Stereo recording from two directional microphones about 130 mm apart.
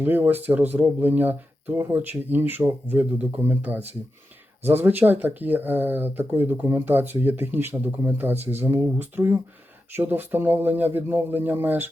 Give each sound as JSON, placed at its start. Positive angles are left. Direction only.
{"t": 0.0, "sound": "speech", "side_deg": -15}